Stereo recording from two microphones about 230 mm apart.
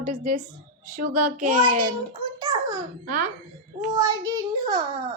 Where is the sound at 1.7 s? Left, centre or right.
Right.